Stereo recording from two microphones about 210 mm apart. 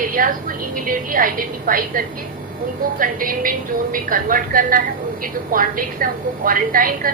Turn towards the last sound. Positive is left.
turn(degrees=-40)  # may be behind; listen again after turning